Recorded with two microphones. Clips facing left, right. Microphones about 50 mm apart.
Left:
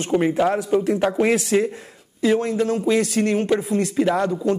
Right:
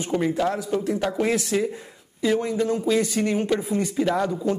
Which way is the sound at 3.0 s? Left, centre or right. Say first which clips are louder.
Left 3 dB; centre.